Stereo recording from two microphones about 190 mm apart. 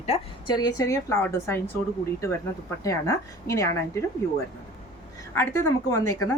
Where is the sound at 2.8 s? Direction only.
15° left (ahead or behind).